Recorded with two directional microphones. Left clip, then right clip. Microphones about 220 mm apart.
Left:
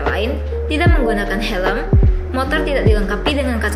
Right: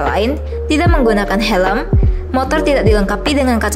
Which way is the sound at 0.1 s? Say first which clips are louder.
Right 4 dB; 55° right (ahead or behind).